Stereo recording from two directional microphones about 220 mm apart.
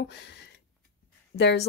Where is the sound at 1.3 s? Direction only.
50° left (ahead or behind).